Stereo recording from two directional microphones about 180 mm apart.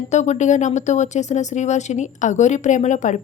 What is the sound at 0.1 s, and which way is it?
A woman's voice, 40° left (ahead or behind).